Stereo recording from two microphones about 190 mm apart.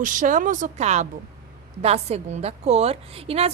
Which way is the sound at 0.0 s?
40° right (ahead or behind).